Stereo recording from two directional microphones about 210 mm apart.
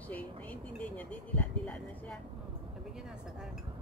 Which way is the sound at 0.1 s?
5° left (ahead or behind).